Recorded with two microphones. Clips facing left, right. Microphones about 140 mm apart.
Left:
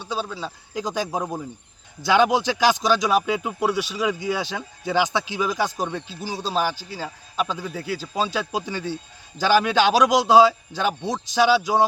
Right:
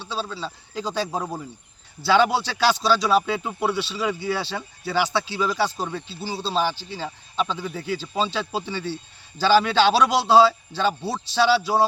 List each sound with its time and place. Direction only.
0.0 s speech: 15° left (ahead or behind)